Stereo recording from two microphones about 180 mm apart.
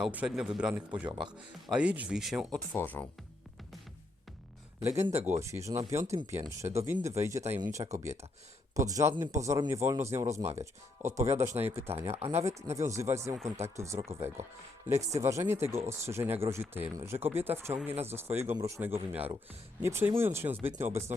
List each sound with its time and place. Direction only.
0.0 s speech: 5° right (ahead or behind)
2.7 s speech: 10° left (ahead or behind)
4.8 s speech: 15° right (ahead or behind)